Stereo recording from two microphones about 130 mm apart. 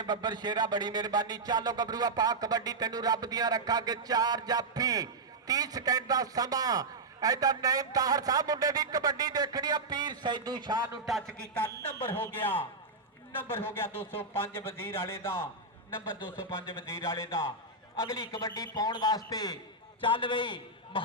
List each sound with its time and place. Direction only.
0.0 s a man's voice: 35° right (ahead or behind)
11.0 s speech: centre (ahead or behind)
12.1 s speech: 15° left (ahead or behind)
16.8 s a man's voice: 20° left (ahead or behind)
20.0 s a man's voice: 40° left (ahead or behind)